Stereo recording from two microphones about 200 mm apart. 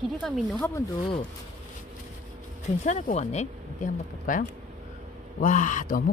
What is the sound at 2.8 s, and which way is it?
Speech, 35° left (ahead or behind).